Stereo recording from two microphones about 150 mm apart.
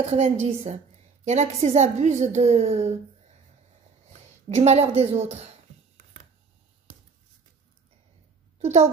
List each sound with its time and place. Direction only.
0.0 s a woman's voice: 45° right (ahead or behind)
4.1 s speech: 45° right (ahead or behind)
8.5 s a woman's voice: 50° right (ahead or behind)